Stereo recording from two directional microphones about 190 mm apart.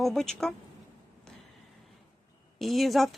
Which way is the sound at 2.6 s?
Centre (ahead or behind).